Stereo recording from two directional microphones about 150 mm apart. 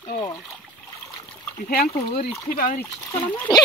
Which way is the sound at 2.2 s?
65° left (ahead or behind).